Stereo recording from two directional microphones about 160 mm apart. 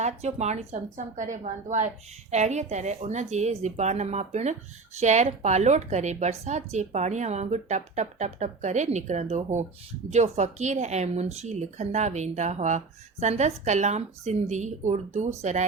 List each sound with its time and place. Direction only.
0.0 s speech: 45° right (ahead or behind)